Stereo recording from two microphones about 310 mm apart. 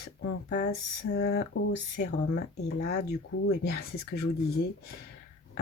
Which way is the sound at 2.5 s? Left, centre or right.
Left.